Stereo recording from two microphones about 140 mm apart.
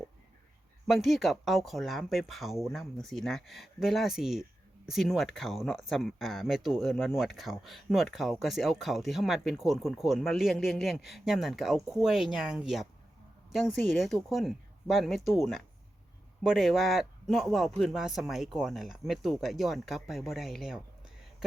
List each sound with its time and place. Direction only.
0.9 s speech: centre (ahead or behind)